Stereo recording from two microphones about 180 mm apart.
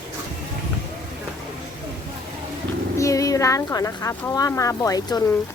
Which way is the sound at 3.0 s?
20° left (ahead or behind).